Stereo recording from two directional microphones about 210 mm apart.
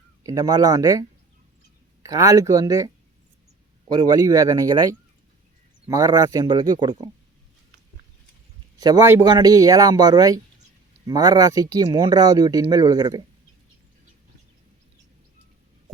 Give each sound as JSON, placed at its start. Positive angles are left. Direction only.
{"t": 0.2, "sound": "speech", "side_deg": -15}
{"t": 2.0, "sound": "speech", "side_deg": -15}
{"t": 8.8, "sound": "speech", "side_deg": -15}